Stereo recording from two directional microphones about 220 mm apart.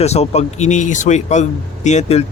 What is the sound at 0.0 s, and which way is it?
Speech, 30° left (ahead or behind).